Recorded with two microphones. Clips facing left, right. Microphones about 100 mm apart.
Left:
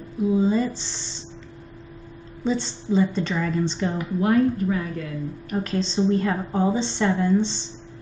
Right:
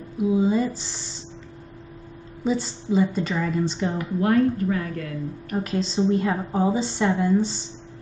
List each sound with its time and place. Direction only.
0.2 s speech: 10° right (ahead or behind)
2.4 s a woman's voice: 10° right (ahead or behind)
4.0 s speech: 15° left (ahead or behind)
5.6 s a woman's voice: 10° right (ahead or behind)